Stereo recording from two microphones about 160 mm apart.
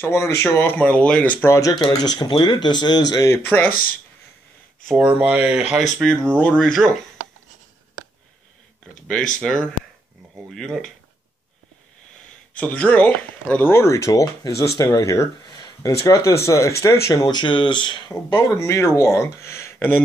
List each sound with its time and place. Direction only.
0.0 s speech: 15° left (ahead or behind)
4.8 s speech: 5° right (ahead or behind)
5.9 s speech: 5° left (ahead or behind)
9.4 s speech: 5° left (ahead or behind)
12.5 s speech: 10° left (ahead or behind)